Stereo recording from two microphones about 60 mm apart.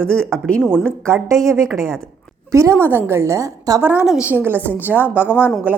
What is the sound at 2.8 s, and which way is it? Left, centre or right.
Speech, right.